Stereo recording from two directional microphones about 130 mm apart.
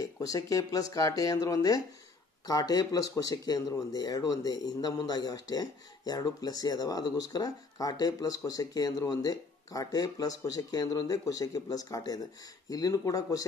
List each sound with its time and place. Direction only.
0.0 s speech: 30° left (ahead or behind)